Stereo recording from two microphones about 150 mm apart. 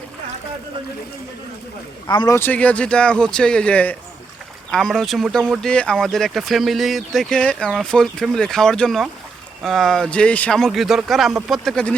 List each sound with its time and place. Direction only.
2.0 s speech: 30° left (ahead or behind)
2.3 s speech: 10° left (ahead or behind)